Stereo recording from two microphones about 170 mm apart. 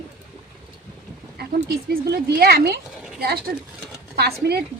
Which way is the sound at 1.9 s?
70° right (ahead or behind).